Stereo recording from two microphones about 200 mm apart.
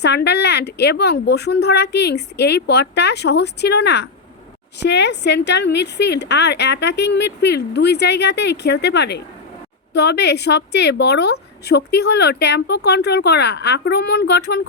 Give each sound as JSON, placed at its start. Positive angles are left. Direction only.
{"t": 0.0, "sound": "a woman's voice", "side_deg": 55}